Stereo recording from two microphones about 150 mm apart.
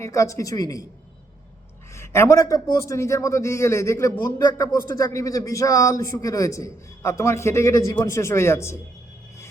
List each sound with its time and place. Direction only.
0.0 s a man's voice: 20° left (ahead or behind)
2.0 s a man's voice: 15° left (ahead or behind)